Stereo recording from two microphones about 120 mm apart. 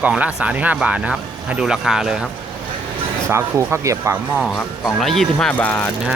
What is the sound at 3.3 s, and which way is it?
Speech, 20° right (ahead or behind).